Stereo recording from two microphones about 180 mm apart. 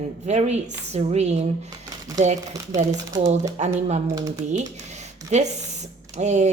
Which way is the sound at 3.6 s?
40° right (ahead or behind).